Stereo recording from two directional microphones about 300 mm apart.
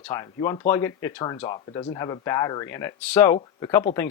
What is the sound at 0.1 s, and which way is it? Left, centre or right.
Speech, centre.